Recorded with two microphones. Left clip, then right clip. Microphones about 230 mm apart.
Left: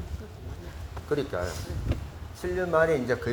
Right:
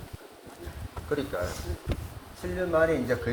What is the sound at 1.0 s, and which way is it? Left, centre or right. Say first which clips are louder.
Speech: left 2 dB; left.